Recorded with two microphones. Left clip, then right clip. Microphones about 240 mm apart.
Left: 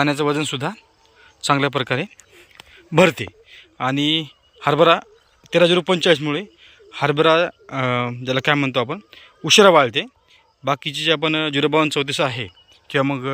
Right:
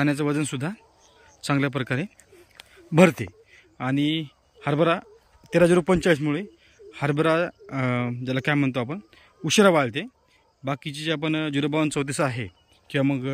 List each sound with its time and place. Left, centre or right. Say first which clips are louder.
0.0 s a man's voice: left 5 dB; centre
2.7 s a sound: left 4 dB; centre
5.5 s a man's voice: left 4 dB; centre